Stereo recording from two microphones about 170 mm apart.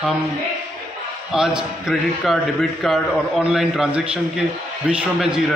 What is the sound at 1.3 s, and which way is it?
A man's voice, 5° right (ahead or behind).